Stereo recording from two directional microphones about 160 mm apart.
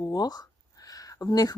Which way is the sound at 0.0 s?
25° left (ahead or behind).